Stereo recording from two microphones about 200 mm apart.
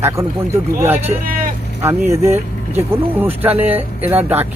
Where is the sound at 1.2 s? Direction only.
45° right (ahead or behind).